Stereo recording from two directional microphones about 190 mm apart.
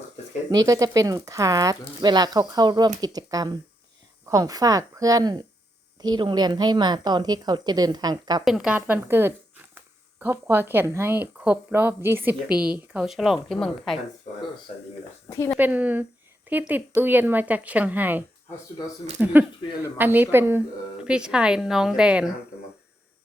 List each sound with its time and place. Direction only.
0.5 s a woman's voice: 20° right (ahead or behind)
8.4 s speech: 5° right (ahead or behind)
15.5 s speech: 10° right (ahead or behind)
19.2 s a woman's voice: 10° right (ahead or behind)